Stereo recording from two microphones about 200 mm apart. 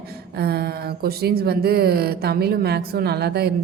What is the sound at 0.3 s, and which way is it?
A woman's voice, 55° right (ahead or behind).